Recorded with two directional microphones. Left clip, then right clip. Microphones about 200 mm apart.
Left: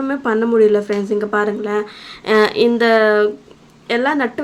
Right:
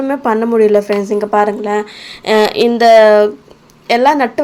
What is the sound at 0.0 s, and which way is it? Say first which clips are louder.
A woman's voice: right 4 dB; centre (ahead or behind).